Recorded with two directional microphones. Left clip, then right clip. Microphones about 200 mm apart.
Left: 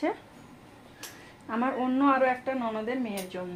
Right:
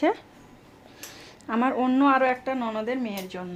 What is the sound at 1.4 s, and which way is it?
Speech, 55° right (ahead or behind).